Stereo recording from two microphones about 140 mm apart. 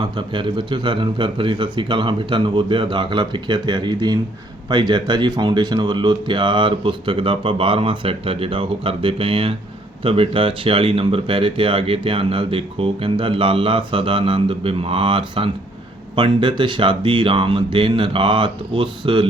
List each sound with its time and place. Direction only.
0.0 s speech: 35° right (ahead or behind)